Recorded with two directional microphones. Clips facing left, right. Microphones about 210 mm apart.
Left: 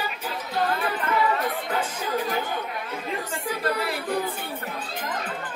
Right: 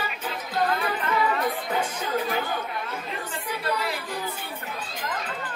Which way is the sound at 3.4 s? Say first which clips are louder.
Left 2 dB; 50° left (ahead or behind).